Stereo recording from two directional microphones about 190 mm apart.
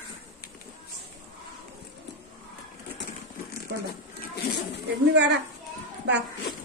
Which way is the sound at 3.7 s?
75° right (ahead or behind).